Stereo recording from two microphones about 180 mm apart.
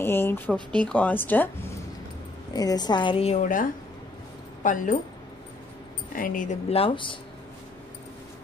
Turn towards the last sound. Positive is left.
turn(degrees=30)  # may be behind; listen again after turning